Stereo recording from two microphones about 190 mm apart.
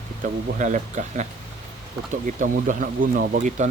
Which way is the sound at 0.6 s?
40° right (ahead or behind).